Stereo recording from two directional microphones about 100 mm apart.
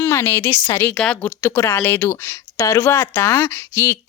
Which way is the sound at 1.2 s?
20° left (ahead or behind).